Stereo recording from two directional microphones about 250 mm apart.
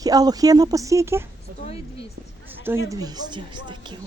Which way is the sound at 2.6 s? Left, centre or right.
Centre.